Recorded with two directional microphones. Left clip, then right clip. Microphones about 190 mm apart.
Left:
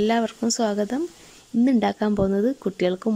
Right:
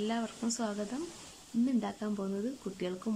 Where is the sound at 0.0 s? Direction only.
35° left (ahead or behind).